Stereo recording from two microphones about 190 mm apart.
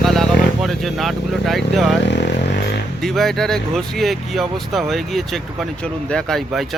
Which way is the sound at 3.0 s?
Centre (ahead or behind).